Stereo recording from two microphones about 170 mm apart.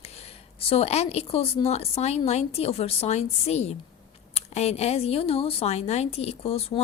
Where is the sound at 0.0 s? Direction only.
35° left (ahead or behind).